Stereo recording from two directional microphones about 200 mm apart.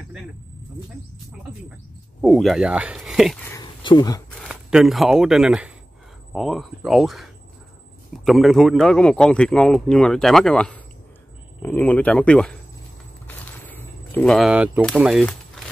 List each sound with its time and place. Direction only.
2.2 s a man's voice: centre (ahead or behind)
3.4 s a sound: 20° left (ahead or behind)
4.4 s a man's voice: centre (ahead or behind)
8.3 s a man's voice: centre (ahead or behind)
13.3 s a sound: 10° left (ahead or behind)
14.8 s a man's voice: centre (ahead or behind)